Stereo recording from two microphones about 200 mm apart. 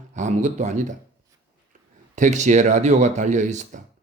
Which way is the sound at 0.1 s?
40° right (ahead or behind).